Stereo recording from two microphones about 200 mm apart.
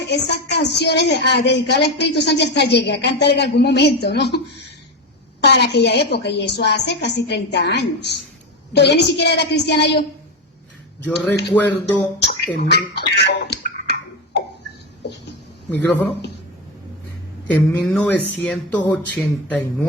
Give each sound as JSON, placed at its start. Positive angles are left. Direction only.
{"t": 0.0, "sound": "a woman's voice", "side_deg": 55}
{"t": 5.4, "sound": "a woman's voice", "side_deg": 55}
{"t": 11.0, "sound": "speech", "side_deg": 10}
{"t": 12.5, "sound": "speech", "side_deg": 55}
{"t": 17.5, "sound": "speech", "side_deg": 10}